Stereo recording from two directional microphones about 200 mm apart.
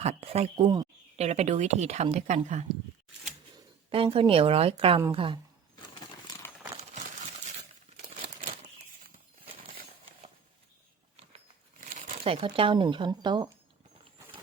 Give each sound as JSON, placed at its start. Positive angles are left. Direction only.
{"t": 0.0, "sound": "speech", "side_deg": -30}
{"t": 1.2, "sound": "speech", "side_deg": -35}
{"t": 3.8, "sound": "speech", "side_deg": -25}
{"t": 5.9, "sound": "coin", "side_deg": 20}
{"t": 11.9, "sound": "crumpling", "side_deg": -45}
{"t": 12.2, "sound": "speech", "side_deg": -30}